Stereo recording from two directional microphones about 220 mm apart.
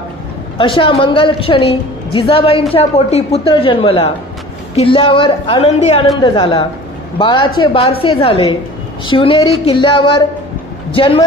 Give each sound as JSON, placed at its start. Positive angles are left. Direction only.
{"t": 0.6, "sound": "a woman's voice", "side_deg": 20}